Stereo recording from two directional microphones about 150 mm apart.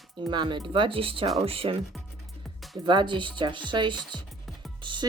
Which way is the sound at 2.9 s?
30° right (ahead or behind).